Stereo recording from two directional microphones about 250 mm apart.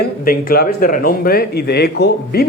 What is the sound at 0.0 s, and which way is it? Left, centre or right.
Speech, left.